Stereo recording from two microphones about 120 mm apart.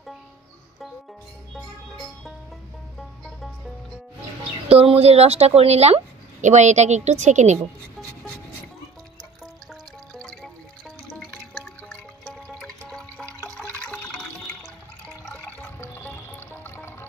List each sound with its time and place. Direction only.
1.5 s music: centre (ahead or behind)
4.6 s speech: 55° right (ahead or behind); by 7.6 s 75° right (ahead or behind)
10.1 s music: 5° left (ahead or behind)
15.8 s music: 20° left (ahead or behind)